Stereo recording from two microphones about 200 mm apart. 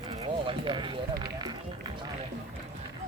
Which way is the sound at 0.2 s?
25° right (ahead or behind).